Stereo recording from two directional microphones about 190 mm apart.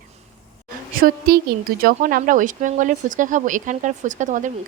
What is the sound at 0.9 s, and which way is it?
A woman's voice, 50° right (ahead or behind).